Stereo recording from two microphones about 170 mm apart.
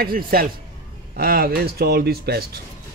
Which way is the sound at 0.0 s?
60° right (ahead or behind).